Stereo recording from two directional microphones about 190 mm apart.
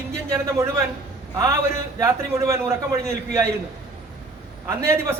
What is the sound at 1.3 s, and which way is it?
A man's voice, 15° right (ahead or behind).